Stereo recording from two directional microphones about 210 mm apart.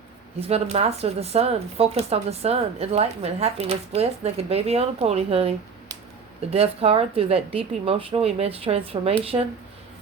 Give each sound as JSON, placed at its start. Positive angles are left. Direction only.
{"t": 0.3, "sound": "speech", "side_deg": -30}